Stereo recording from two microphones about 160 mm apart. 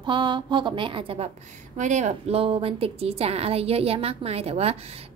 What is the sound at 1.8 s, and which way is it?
A woman's voice, 50° right (ahead or behind).